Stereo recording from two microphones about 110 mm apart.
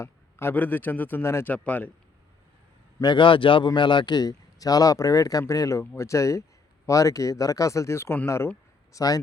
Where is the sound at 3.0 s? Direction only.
50° left (ahead or behind).